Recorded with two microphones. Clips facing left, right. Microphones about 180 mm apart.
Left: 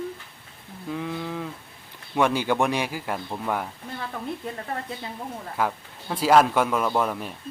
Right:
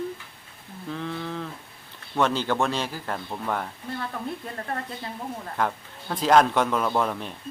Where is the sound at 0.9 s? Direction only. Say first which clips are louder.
Left 2 dB; 10° left (ahead or behind).